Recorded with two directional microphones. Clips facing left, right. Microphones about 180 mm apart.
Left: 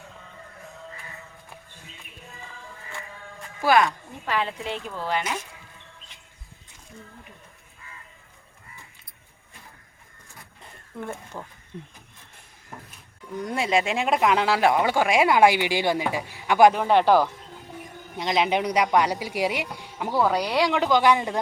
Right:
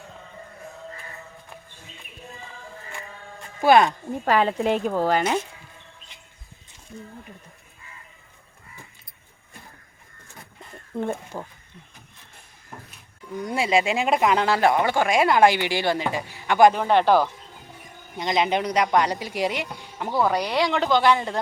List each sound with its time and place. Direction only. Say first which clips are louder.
3.6 s speech: right 4 dB; 25° right (ahead or behind)
4.3 s speech: right 7 dB; 45° right (ahead or behind)
10.9 s speech: right 7 dB; 25° right (ahead or behind)
13.4 s speech: right 2 dB; 5° right (ahead or behind); by 21.3 s 15° left (ahead or behind)